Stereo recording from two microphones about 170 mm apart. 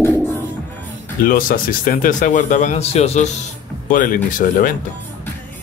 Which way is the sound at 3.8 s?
55° left (ahead or behind).